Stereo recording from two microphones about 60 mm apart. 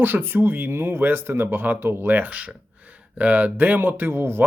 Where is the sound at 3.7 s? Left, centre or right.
Right.